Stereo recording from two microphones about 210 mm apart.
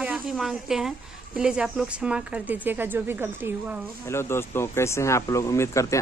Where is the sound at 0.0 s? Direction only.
5° right (ahead or behind).